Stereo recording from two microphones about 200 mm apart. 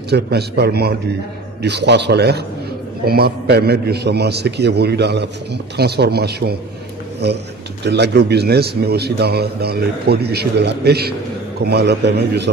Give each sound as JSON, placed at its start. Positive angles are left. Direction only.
{"t": 0.1, "sound": "a man's voice", "side_deg": -55}
{"t": 7.8, "sound": "a man's voice", "side_deg": -55}